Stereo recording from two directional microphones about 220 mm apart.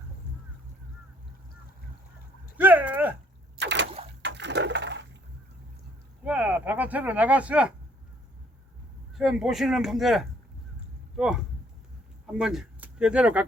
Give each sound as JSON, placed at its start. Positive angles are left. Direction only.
{"t": 2.6, "sound": "dog", "side_deg": -10}
{"t": 3.6, "sound": "boat", "side_deg": -55}
{"t": 4.2, "sound": "a sound", "side_deg": -55}
{"t": 6.2, "sound": "speech", "side_deg": -5}
{"t": 9.1, "sound": "speech", "side_deg": 0}